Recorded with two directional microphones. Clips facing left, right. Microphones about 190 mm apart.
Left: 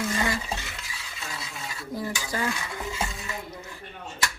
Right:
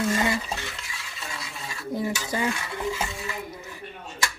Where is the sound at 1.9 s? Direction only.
20° right (ahead or behind).